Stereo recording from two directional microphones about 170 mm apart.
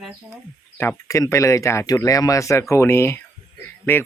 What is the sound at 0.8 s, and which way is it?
Speech, 15° left (ahead or behind).